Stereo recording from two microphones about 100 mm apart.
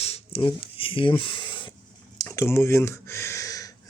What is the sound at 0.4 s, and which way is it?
Speech, 60° left (ahead or behind).